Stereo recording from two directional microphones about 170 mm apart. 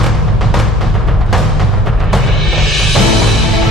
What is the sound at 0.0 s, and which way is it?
Music, centre (ahead or behind).